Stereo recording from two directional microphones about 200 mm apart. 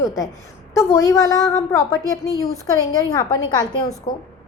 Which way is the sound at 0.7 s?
15° left (ahead or behind).